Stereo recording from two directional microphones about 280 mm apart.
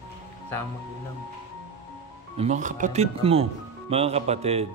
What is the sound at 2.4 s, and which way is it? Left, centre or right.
Speech, right.